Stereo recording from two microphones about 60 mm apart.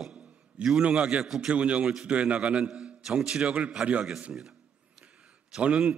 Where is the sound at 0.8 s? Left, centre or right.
Centre.